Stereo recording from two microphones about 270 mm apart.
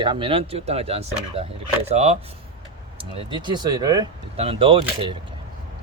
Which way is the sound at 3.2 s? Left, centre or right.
Centre.